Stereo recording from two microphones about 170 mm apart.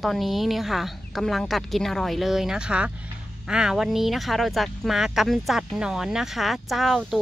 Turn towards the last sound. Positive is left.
turn(degrees=0)  # may be behind; listen again after turning